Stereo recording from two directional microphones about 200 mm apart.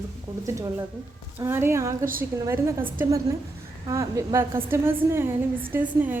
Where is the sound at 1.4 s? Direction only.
10° right (ahead or behind).